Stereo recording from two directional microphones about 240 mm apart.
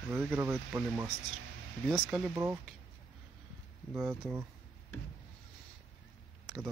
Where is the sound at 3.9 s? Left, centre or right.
Centre.